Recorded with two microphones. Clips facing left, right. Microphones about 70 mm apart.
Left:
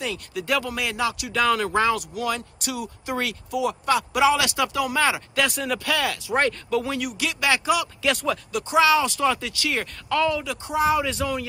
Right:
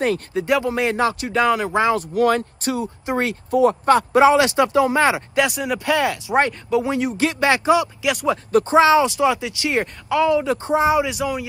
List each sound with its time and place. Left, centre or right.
0.0 s speech: right
1.4 s speech: centre
2.0 s speech: right
8.0 s speech: centre
8.5 s speech: right; by 10.4 s centre
10.4 s speech: right; by 11.4 s centre